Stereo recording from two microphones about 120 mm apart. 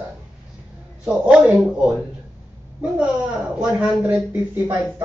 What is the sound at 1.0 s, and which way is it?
Speech, 10° right (ahead or behind).